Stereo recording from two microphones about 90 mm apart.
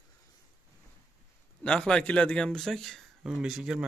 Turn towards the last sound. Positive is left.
turn(degrees=-5)  # may be behind; listen again after turning